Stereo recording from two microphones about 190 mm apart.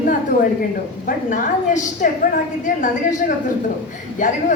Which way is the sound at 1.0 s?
40° left (ahead or behind).